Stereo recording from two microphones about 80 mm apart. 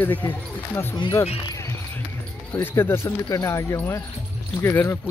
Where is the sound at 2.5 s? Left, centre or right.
Left.